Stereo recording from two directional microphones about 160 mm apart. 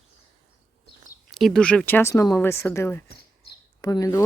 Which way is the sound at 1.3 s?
Centre (ahead or behind).